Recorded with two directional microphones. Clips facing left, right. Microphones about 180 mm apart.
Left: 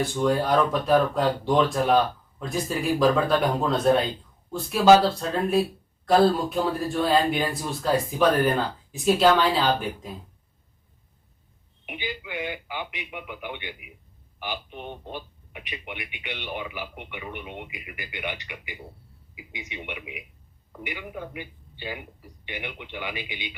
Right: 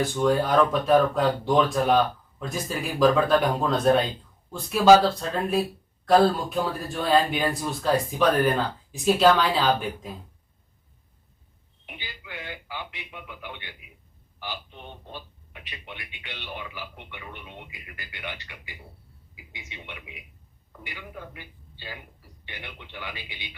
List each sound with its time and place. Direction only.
0.0 s speech: centre (ahead or behind)
11.9 s speech: 20° left (ahead or behind)